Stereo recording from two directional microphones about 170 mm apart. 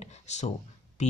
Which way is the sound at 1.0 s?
45° left (ahead or behind).